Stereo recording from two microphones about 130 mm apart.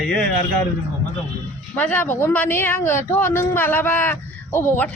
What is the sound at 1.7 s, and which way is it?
Speech, 15° left (ahead or behind).